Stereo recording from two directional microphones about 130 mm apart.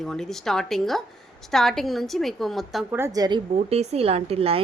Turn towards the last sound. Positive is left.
turn(degrees=-50)  # may be behind; listen again after turning